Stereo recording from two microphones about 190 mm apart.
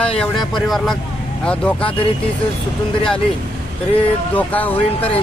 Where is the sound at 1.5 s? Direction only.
5° left (ahead or behind).